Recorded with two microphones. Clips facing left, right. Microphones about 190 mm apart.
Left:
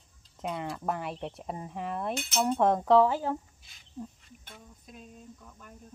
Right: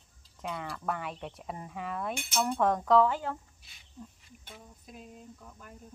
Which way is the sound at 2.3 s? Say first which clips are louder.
Left 3 dB; 20° left (ahead or behind).